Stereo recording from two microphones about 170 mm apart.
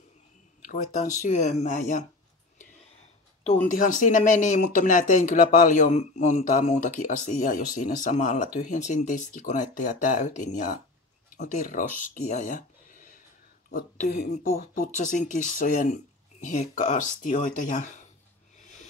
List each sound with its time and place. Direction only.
0.7 s speech: 45° left (ahead or behind)
2.6 s whispering: 40° left (ahead or behind)
3.6 s speech: 50° left (ahead or behind)